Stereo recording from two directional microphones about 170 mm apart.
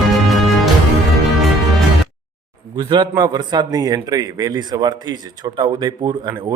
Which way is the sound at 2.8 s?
25° right (ahead or behind).